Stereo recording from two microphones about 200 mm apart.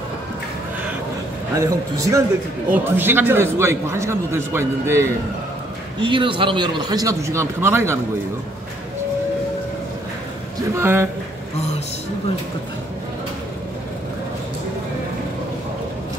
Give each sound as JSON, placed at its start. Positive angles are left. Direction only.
{"t": 1.6, "sound": "a man's voice", "side_deg": -15}
{"t": 5.9, "sound": "a man's voice", "side_deg": -25}
{"t": 10.7, "sound": "a man's voice", "side_deg": -10}